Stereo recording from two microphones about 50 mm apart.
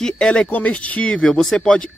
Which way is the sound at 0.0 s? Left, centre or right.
Centre.